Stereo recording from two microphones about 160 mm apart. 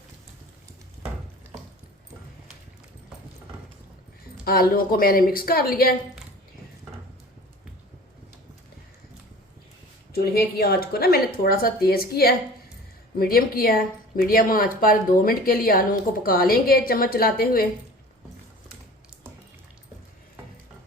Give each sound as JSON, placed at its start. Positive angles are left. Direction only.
{"t": 4.4, "sound": "a woman's voice", "side_deg": 70}
{"t": 10.1, "sound": "a woman's voice", "side_deg": 75}